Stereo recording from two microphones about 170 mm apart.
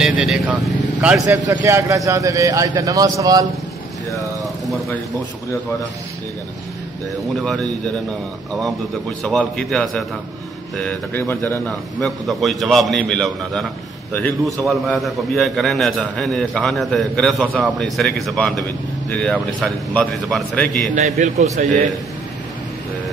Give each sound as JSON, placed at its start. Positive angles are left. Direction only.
{"t": 0.0, "sound": "a man's voice", "side_deg": -5}
{"t": 7.3, "sound": "a man's voice", "side_deg": 5}
{"t": 9.2, "sound": "a man's voice", "side_deg": 5}
{"t": 20.9, "sound": "a man's voice", "side_deg": -45}